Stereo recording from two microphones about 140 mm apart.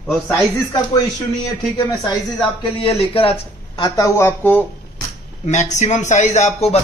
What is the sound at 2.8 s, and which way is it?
Speech, 40° left (ahead or behind).